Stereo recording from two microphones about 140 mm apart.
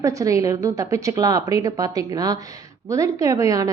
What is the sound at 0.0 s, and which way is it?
A woman's voice, 25° right (ahead or behind).